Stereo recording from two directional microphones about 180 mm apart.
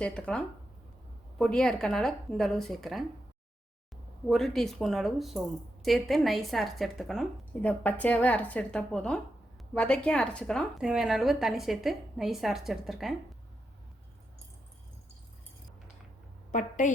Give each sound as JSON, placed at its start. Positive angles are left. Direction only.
{"t": 0.0, "sound": "a woman's voice", "side_deg": 5}
{"t": 4.3, "sound": "a woman's voice", "side_deg": 0}
{"t": 16.5, "sound": "a woman's voice", "side_deg": 45}